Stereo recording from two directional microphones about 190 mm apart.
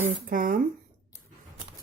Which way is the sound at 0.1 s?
45° right (ahead or behind).